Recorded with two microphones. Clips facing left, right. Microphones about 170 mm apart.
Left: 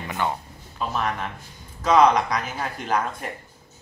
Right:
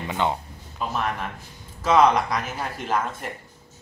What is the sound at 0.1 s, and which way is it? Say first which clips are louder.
Speech: right 2 dB; 20° right (ahead or behind).